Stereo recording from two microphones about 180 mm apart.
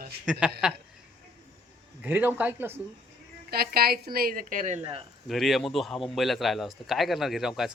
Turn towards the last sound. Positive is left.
turn(degrees=0)  # may be behind; listen again after turning